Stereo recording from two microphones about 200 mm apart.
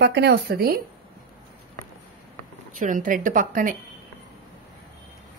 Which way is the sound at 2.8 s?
40° right (ahead or behind).